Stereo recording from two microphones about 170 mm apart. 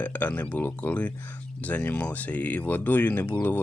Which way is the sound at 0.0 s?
10° left (ahead or behind).